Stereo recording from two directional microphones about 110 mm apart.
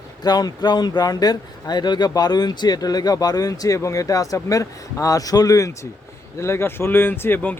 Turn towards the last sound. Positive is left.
turn(degrees=15)  # may be behind; listen again after turning